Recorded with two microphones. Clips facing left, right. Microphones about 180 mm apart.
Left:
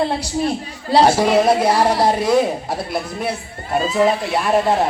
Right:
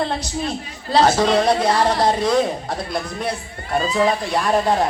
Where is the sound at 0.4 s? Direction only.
10° left (ahead or behind).